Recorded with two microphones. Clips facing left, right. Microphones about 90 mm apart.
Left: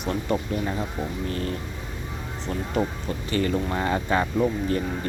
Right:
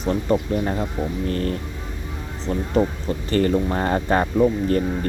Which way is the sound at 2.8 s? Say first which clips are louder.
Right 6 dB; 30° right (ahead or behind).